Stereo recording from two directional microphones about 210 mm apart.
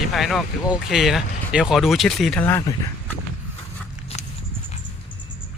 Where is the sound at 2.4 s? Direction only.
10° left (ahead or behind).